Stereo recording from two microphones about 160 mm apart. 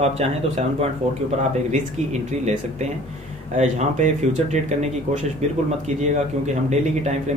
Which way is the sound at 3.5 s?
50° right (ahead or behind).